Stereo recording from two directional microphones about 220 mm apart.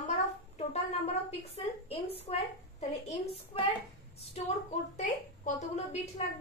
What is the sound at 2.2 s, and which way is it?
A woman's voice, 30° left (ahead or behind).